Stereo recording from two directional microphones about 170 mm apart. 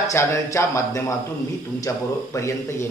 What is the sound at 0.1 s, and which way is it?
A woman's voice, 15° left (ahead or behind).